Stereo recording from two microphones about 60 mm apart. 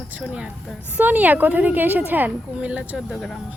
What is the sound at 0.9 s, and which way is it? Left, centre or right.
Speech, right.